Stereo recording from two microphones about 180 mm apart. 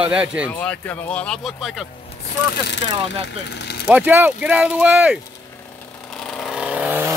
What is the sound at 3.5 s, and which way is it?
Vehicle, 70° left (ahead or behind).